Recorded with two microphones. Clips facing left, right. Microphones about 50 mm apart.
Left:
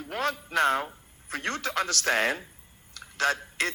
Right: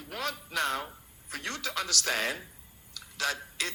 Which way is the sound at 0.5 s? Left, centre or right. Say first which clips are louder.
Left 7 dB; left.